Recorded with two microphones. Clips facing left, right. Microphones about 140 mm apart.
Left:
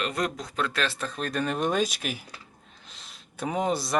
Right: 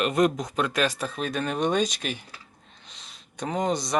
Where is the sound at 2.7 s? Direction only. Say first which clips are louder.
Even; centre (ahead or behind).